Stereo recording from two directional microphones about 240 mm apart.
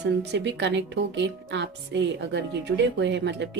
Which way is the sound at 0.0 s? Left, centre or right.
Right.